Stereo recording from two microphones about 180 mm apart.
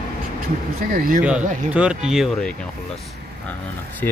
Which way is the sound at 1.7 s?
5° right (ahead or behind).